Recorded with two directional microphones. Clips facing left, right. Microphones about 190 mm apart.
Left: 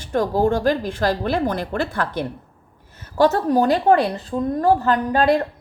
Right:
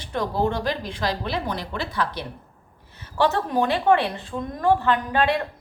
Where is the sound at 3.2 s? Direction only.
40° left (ahead or behind).